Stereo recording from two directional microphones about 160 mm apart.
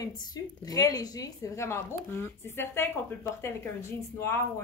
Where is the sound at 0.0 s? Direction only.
25° left (ahead or behind).